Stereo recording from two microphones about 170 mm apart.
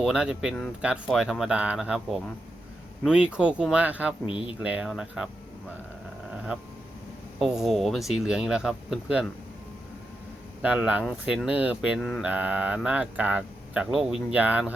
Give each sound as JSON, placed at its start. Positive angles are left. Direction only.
{"t": 0.0, "sound": "speech", "side_deg": -5}
{"t": 4.3, "sound": "speech", "side_deg": 30}
{"t": 4.6, "sound": "speech", "side_deg": -5}
{"t": 6.3, "sound": "dog", "side_deg": -5}
{"t": 7.3, "sound": "speech", "side_deg": 0}
{"t": 10.6, "sound": "speech", "side_deg": -5}
{"t": 11.9, "sound": "speech", "side_deg": 5}
{"t": 12.2, "sound": "speech", "side_deg": -10}